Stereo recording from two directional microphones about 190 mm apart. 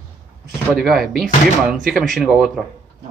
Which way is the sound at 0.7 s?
Centre (ahead or behind).